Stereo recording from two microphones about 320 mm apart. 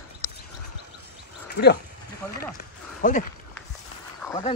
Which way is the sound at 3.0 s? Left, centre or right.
Left.